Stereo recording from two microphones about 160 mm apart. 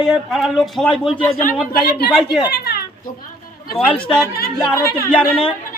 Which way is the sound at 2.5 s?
80° left.